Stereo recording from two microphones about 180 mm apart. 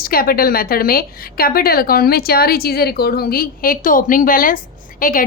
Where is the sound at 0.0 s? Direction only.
55° left (ahead or behind).